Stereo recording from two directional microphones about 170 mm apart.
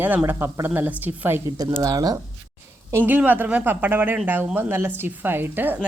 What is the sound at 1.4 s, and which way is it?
A woman's voice, 20° right (ahead or behind).